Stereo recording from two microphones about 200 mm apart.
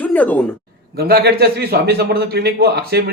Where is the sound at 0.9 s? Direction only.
50° right (ahead or behind).